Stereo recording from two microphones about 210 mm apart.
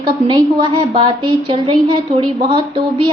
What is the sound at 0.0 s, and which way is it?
A woman's voice, 20° right (ahead or behind).